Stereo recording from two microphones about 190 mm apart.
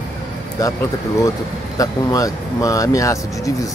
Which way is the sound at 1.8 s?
20° left (ahead or behind).